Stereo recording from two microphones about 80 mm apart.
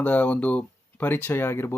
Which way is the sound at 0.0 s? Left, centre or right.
Left.